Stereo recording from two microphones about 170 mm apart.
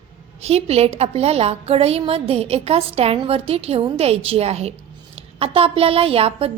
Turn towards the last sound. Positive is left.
turn(degrees=-35)  # may be behind; listen again after turning